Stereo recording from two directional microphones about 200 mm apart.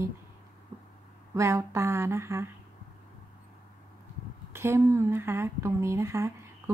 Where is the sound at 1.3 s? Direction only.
15° right (ahead or behind).